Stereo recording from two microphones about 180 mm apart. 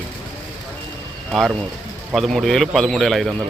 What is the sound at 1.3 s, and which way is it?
A man's voice, centre (ahead or behind).